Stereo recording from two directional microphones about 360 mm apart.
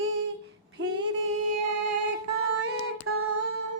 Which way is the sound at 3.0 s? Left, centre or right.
Right.